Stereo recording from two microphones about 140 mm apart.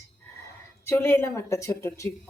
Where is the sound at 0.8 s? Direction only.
15° left (ahead or behind).